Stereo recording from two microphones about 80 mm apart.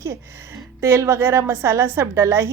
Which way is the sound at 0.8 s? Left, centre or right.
Right.